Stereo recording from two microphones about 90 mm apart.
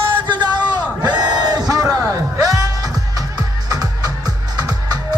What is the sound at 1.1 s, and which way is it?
Music, 50° right (ahead or behind).